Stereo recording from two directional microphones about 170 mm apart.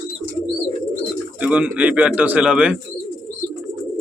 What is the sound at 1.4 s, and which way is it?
Speech, 5° right (ahead or behind).